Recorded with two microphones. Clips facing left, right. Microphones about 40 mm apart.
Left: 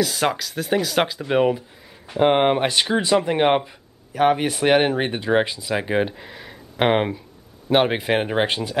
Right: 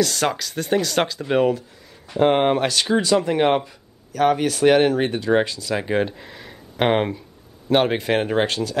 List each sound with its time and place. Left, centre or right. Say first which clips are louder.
0.0 s speech: even; centre